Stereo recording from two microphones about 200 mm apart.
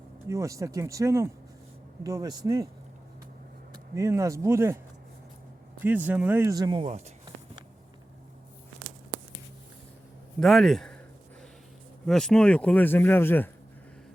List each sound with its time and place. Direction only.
0.3 s speech: 15° right (ahead or behind)
3.9 s speech: 15° right (ahead or behind)
5.8 s speech: 10° right (ahead or behind); by 7.3 s 30° right (ahead or behind)
10.4 s a man's voice: centre (ahead or behind)
12.0 s speech: centre (ahead or behind)